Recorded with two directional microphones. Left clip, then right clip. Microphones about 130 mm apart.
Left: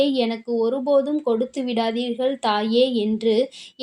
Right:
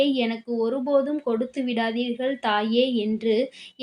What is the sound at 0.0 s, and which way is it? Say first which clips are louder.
Speech: left 2 dB; 40° left (ahead or behind).